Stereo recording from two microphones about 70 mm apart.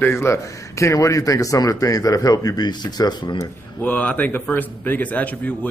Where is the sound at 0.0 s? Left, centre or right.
Left.